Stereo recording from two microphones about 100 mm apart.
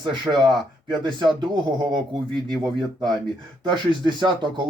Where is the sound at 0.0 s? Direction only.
50° right (ahead or behind).